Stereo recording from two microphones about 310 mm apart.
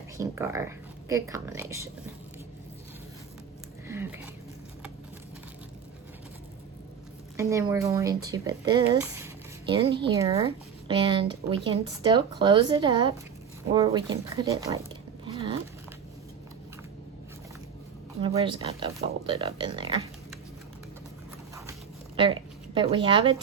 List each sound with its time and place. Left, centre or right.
0.2 s speech: centre
3.8 s a sound: centre
7.3 s speech: centre
15.2 s a sound: centre
18.2 s speech: centre
21.5 s zipper: centre